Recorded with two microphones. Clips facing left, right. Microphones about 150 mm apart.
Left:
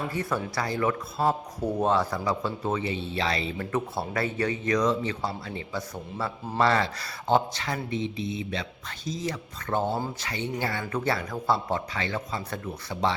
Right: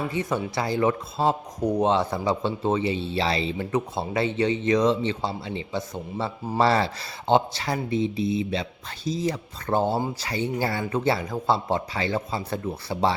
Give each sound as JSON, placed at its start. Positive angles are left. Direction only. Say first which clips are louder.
{"t": 0.1, "sound": "speech", "louder": "right 3 dB", "side_deg": -20}
{"t": 3.7, "sound": "speech", "louder": "right 3 dB", "side_deg": -20}